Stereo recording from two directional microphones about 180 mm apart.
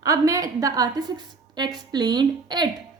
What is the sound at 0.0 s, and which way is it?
A woman's voice, 20° right (ahead or behind).